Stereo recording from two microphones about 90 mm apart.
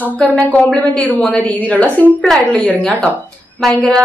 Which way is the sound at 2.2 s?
Centre (ahead or behind).